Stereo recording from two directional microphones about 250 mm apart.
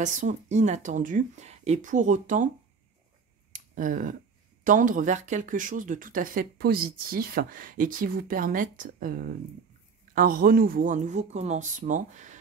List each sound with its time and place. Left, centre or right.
0.0 s speech: right
3.5 s speech: right